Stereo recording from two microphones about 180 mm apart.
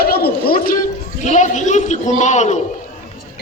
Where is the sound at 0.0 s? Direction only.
60° left (ahead or behind).